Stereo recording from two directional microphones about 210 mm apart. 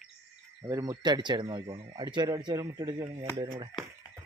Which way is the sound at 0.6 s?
15° right (ahead or behind).